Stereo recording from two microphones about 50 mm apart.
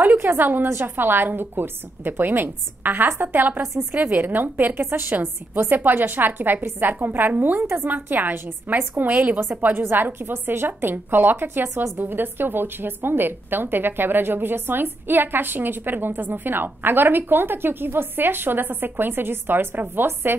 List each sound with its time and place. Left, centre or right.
0.0 s a woman's voice: right
9.6 s a woman's voice: right